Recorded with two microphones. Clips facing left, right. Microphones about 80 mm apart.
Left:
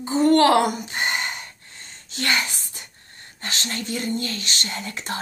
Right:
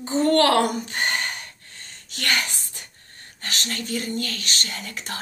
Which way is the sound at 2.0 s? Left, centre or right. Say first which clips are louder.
Left 2 dB; left.